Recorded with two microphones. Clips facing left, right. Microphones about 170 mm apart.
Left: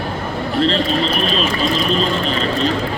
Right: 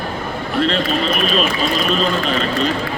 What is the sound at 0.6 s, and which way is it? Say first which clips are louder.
Speech: left 1 dB; 30° left (ahead or behind).